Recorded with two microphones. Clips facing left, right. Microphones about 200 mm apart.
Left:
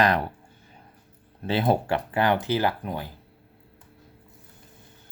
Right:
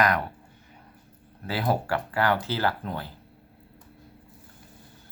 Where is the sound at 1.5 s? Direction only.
25° left (ahead or behind).